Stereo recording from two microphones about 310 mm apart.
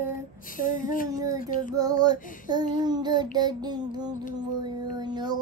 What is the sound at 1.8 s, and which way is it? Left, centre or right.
Child singing, centre.